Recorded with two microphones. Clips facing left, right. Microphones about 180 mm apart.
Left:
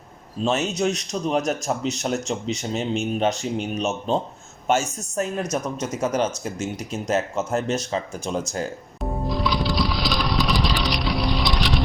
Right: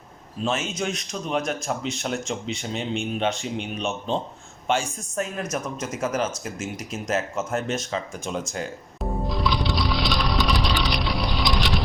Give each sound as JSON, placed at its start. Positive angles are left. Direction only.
{"t": 0.4, "sound": "a man's voice", "side_deg": 40}
{"t": 9.2, "sound": "music", "side_deg": 0}